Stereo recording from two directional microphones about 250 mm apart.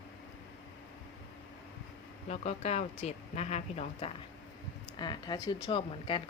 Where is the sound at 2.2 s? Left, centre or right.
Left.